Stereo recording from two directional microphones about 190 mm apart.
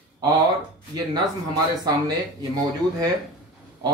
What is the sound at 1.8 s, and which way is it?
Speech, 20° right (ahead or behind).